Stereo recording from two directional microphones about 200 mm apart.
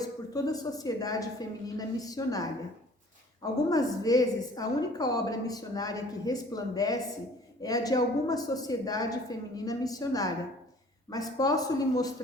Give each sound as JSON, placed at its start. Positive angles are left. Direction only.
{"t": 0.0, "sound": "a woman's voice", "side_deg": 20}